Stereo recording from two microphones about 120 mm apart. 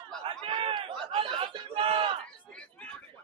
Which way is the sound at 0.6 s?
45° right (ahead or behind).